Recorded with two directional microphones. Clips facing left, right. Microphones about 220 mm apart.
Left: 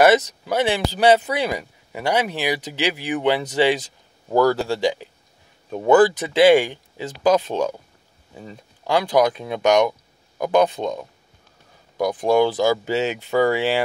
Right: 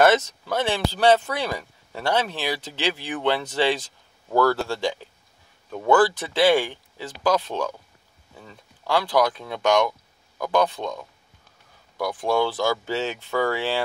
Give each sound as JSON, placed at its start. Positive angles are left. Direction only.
{"t": 0.0, "sound": "speech", "side_deg": 15}